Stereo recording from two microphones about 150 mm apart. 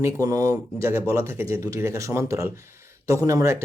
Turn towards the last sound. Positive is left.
turn(degrees=-20)  # may be behind; listen again after turning